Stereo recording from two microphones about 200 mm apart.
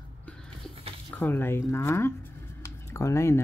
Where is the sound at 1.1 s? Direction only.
10° left (ahead or behind).